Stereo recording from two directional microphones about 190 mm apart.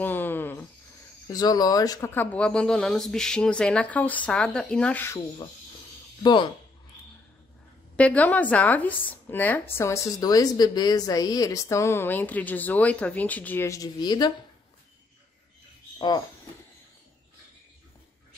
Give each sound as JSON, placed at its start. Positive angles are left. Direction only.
{"t": 0.0, "sound": "a sound", "side_deg": 10}
{"t": 1.3, "sound": "speech", "side_deg": 20}
{"t": 7.9, "sound": "a woman's voice", "side_deg": 5}